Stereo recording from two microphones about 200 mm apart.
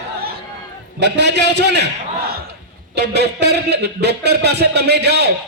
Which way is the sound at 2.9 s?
55° right (ahead or behind).